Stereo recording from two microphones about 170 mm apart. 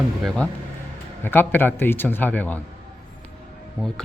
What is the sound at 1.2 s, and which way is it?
Speech, 10° left (ahead or behind).